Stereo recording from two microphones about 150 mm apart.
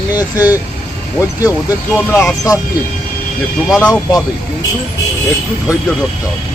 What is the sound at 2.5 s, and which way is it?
Speech, 20° left (ahead or behind).